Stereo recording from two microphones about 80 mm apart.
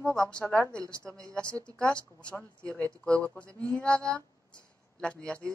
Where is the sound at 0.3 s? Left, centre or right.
Centre.